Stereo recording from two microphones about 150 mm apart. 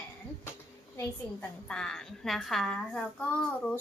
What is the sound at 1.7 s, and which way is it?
A woman's voice, 5° left (ahead or behind).